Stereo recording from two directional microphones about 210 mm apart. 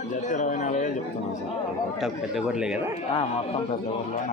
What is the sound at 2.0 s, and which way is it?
Speech, centre (ahead or behind).